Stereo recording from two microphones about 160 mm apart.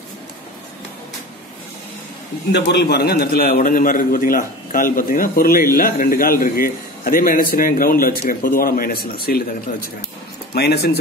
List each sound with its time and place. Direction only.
2.5 s a man's voice: 90° left; by 9.8 s 70° left (ahead or behind)
10.5 s speech: 90° left